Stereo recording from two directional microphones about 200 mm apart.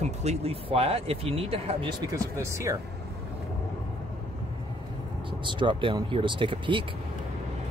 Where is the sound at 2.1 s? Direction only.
15° right (ahead or behind).